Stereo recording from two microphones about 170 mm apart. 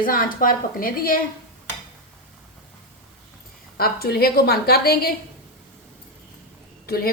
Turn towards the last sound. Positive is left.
turn(degrees=65)  # may be behind; listen again after turning